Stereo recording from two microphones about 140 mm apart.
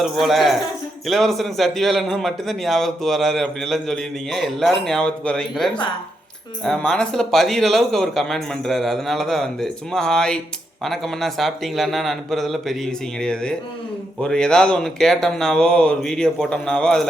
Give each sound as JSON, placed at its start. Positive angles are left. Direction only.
{"t": 0.0, "sound": "a man's voice", "side_deg": 0}